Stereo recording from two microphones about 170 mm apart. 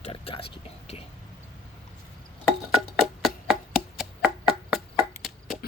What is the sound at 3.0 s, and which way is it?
Music, 5° right (ahead or behind).